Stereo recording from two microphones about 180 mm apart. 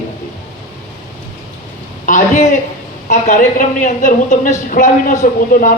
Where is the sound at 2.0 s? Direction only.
45° left (ahead or behind).